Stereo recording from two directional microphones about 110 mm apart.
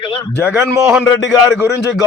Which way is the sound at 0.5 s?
25° right (ahead or behind).